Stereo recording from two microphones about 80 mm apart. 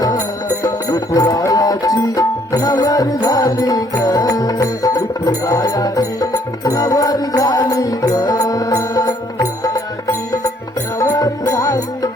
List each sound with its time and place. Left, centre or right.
0.6 s music: left